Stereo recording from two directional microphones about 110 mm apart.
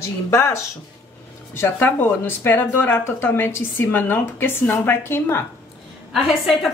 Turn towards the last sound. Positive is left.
turn(degrees=0)  # may be behind; listen again after turning